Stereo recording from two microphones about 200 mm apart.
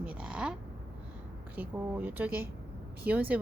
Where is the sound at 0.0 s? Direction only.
5° right (ahead or behind).